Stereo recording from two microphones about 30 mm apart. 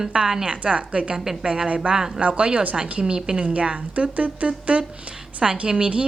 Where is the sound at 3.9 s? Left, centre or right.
Right.